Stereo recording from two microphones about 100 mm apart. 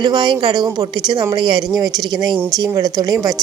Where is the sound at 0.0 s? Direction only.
45° right (ahead or behind).